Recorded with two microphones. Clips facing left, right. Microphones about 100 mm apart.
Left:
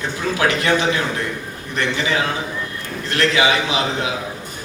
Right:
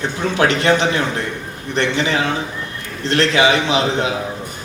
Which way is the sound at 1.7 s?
30° right (ahead or behind).